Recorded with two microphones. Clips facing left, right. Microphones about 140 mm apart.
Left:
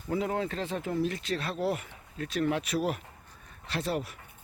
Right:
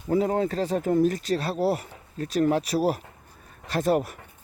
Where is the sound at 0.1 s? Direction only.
40° right (ahead or behind).